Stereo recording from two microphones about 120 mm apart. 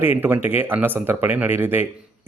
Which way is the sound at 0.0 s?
20° right (ahead or behind).